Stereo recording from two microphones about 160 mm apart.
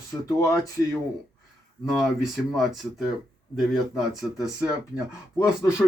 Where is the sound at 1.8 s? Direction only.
Centre (ahead or behind).